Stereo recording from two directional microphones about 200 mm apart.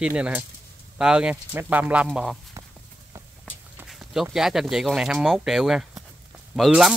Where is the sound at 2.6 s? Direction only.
15° right (ahead or behind).